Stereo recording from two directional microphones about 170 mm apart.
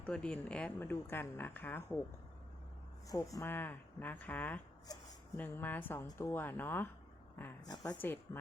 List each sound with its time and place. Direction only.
0.0 s speech: 5° left (ahead or behind)
3.1 s speech: 20° left (ahead or behind)
7.9 s speech: 10° left (ahead or behind)